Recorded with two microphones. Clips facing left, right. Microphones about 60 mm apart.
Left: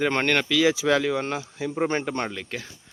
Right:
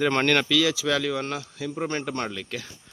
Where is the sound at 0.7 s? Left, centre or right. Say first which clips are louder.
Left 3 dB; left.